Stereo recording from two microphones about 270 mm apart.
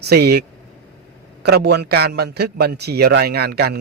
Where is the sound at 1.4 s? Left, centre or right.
Right.